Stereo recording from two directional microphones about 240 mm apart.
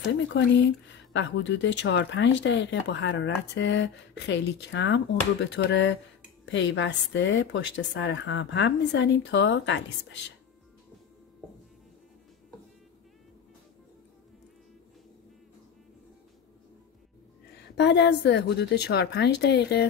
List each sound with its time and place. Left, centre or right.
1.1 s speech: left
17.7 s speech: left